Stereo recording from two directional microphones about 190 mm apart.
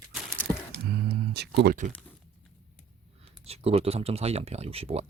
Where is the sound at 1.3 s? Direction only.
60° right (ahead or behind).